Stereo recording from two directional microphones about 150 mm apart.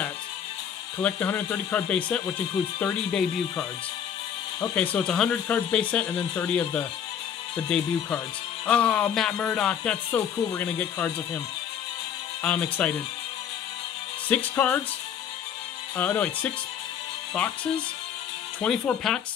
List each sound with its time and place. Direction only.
1.0 s speech: 10° left (ahead or behind)
4.9 s speech: 5° left (ahead or behind)
10.1 s speech: 20° left (ahead or behind)
12.4 s speech: 10° left (ahead or behind)
14.3 s speech: 10° left (ahead or behind)
16.0 s speech: 10° left (ahead or behind)
17.3 s speech: 5° left (ahead or behind)